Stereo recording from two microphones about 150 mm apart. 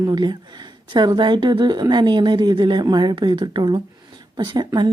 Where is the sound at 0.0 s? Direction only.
30° right (ahead or behind).